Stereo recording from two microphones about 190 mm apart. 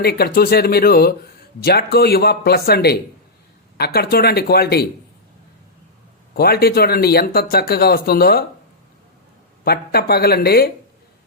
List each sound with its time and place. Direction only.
0.0 s speech: 55° left (ahead or behind)
6.3 s speech: 55° left (ahead or behind)
9.6 s speech: 55° left (ahead or behind)